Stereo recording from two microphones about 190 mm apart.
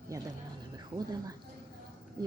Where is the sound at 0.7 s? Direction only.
20° right (ahead or behind).